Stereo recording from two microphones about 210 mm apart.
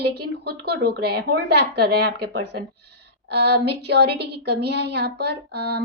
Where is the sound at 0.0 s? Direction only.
50° right (ahead or behind).